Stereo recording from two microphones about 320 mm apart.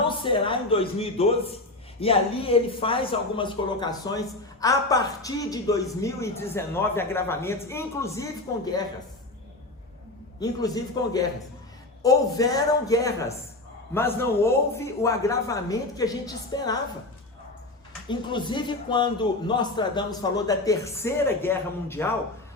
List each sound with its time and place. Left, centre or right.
0.2 s speech: centre
11.0 s speech: centre
18.1 s speech: centre